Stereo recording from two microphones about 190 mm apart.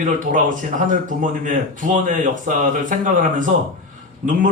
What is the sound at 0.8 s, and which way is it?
Speech, 45° right (ahead or behind).